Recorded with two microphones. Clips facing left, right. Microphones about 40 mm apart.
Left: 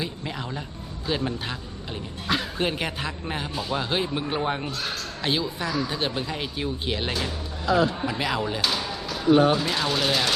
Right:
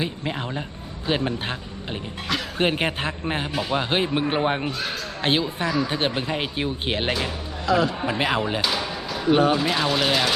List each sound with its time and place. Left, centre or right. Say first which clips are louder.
0.0 s a man's voice: right 4 dB; right
7.7 s a man's voice: right 1 dB; right
8.0 s speech: right 3 dB; right
9.6 s speech: right 3 dB; centre